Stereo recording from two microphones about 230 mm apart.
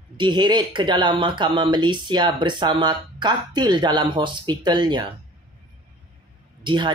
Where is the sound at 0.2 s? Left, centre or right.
Centre.